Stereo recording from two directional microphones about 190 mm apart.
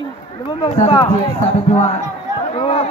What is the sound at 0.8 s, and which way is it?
A man's voice, 30° left (ahead or behind).